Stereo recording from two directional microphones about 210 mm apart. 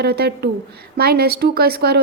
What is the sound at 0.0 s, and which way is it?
A woman's voice, 50° right (ahead or behind).